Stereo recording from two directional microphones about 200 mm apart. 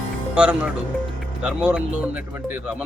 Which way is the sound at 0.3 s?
5° right (ahead or behind).